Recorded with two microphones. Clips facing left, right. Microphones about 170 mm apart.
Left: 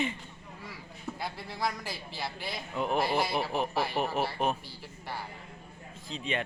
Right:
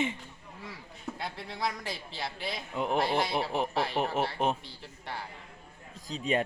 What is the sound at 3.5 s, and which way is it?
Speech, 20° right (ahead or behind).